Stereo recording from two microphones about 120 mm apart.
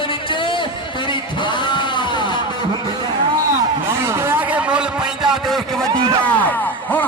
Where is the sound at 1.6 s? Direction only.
40° left (ahead or behind).